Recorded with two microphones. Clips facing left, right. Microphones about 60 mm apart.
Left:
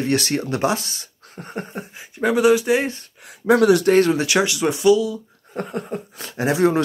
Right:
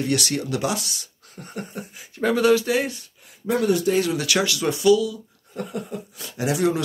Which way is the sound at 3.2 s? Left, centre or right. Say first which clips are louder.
Left 7 dB; left.